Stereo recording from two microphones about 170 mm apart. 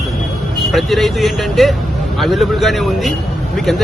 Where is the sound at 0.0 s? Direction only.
Centre (ahead or behind).